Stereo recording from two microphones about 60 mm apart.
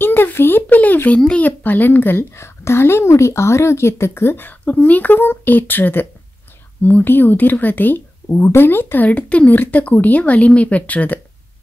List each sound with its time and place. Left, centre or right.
0.0 s a sound: left
1.2 s speech: left
2.4 s a woman's voice: left
4.5 s speech: left
8.3 s a woman's voice: left